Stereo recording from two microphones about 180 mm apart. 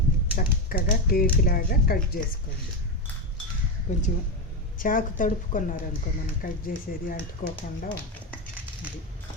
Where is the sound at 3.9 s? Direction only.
40° left (ahead or behind).